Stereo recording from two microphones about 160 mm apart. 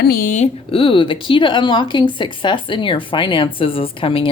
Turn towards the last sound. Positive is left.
turn(degrees=35)  # may be behind; listen again after turning